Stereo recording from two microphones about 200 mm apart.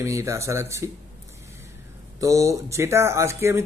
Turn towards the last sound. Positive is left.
turn(degrees=-15)  # may be behind; listen again after turning